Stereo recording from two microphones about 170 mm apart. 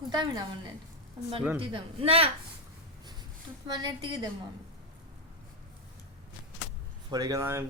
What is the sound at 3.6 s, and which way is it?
Speech, 25° right (ahead or behind).